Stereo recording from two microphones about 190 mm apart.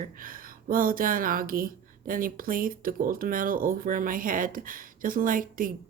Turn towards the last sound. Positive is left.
turn(degrees=-45)  # may be behind; listen again after turning